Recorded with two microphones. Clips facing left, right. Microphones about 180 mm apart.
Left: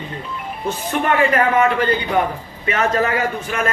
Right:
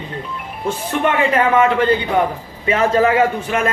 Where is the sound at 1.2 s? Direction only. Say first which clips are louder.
Right 1 dB; 25° right (ahead or behind).